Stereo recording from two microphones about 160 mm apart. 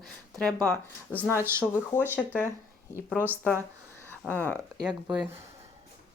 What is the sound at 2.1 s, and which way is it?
Speech, 10° left (ahead or behind).